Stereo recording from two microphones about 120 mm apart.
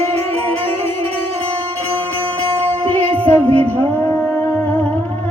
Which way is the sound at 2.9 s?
50° right (ahead or behind).